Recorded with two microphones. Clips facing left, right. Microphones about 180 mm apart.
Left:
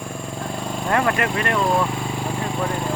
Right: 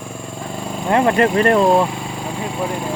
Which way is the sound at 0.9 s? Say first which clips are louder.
Right 7 dB; 25° right (ahead or behind).